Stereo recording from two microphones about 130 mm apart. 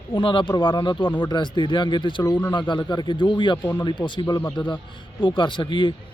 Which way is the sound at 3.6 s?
15° left (ahead or behind).